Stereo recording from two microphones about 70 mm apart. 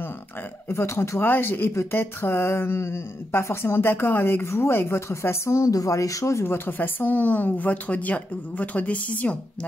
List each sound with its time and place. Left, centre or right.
0.7 s speech: left
1.2 s speech: left